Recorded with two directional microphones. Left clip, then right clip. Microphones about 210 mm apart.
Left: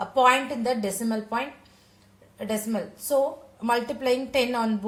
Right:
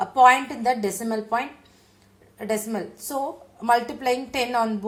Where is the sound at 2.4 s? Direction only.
15° right (ahead or behind).